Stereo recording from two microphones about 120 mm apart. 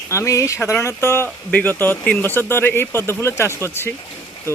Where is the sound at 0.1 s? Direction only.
25° left (ahead or behind).